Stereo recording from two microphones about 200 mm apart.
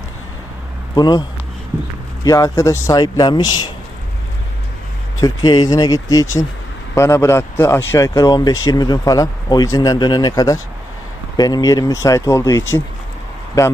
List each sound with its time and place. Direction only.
0.9 s speech: 20° left (ahead or behind)
2.2 s speech: 15° left (ahead or behind)
5.2 s speech: 20° left (ahead or behind)